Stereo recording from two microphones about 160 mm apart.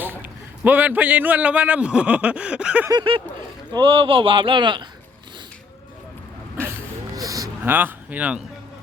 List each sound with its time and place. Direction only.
0.0 s a man's voice: 10° right (ahead or behind)
2.9 s speech: 30° right (ahead or behind)
7.2 s a sound: 20° right (ahead or behind)